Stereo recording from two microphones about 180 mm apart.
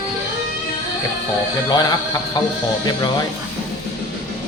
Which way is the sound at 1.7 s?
20° left (ahead or behind).